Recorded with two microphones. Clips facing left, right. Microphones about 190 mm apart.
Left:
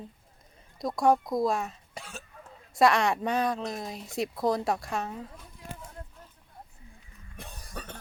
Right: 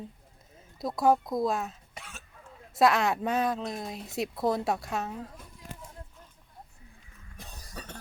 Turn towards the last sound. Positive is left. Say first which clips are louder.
# left 2 dB
turn(degrees=55)  # may be behind; listen again after turning